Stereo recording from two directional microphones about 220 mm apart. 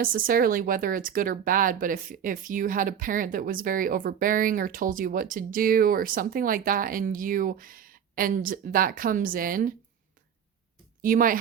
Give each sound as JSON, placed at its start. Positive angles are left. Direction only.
{"t": 0.0, "sound": "speech", "side_deg": -40}
{"t": 11.0, "sound": "speech", "side_deg": -40}